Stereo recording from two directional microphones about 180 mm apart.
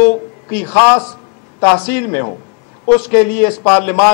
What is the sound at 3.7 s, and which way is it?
Speech, 10° left (ahead or behind).